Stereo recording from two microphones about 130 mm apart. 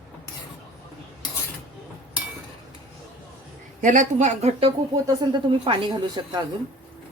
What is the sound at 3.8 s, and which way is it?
Speech, 80° right.